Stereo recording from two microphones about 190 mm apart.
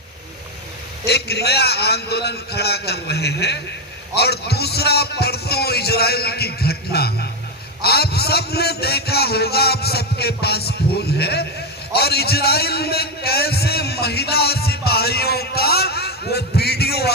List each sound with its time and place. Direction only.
1.0 s a man's voice: 60° left (ahead or behind)